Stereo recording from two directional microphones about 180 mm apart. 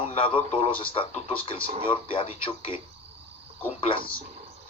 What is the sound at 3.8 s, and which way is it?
Speech, 30° left (ahead or behind).